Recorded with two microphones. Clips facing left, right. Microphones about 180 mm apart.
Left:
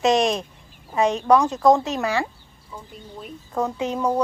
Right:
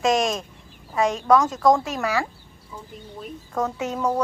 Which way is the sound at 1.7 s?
25° left (ahead or behind).